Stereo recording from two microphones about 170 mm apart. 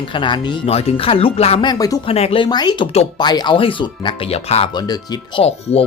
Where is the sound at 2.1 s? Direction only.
35° left (ahead or behind).